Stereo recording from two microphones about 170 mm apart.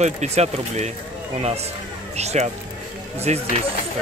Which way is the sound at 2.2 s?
40° right (ahead or behind).